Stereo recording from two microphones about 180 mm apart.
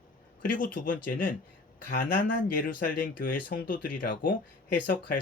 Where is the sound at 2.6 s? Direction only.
50° left (ahead or behind).